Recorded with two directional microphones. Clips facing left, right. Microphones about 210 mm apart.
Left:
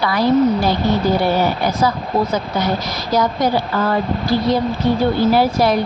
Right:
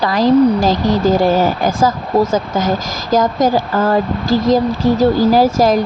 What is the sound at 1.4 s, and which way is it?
Speech, 45° right (ahead or behind).